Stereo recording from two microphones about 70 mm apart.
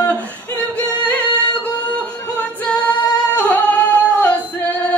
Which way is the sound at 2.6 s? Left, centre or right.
Centre.